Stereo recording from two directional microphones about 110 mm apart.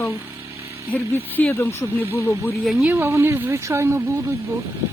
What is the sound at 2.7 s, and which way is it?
Speech, 15° right (ahead or behind).